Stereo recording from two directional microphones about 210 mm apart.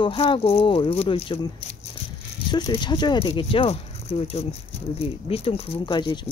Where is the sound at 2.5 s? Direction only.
20° left (ahead or behind).